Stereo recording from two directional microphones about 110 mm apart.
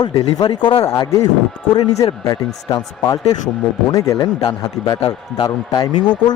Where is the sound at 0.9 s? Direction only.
30° left (ahead or behind).